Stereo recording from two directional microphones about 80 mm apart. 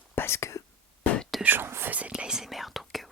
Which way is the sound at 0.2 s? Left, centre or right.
Left.